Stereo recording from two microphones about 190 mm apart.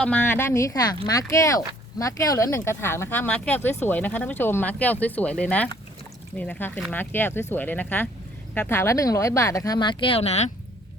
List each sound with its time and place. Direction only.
0.0 s speech: 10° left (ahead or behind); by 10.5 s 35° left (ahead or behind)